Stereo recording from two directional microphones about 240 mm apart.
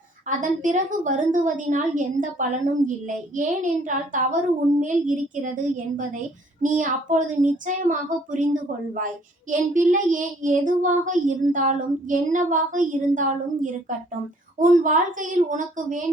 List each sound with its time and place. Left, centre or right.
0.3 s child singing: right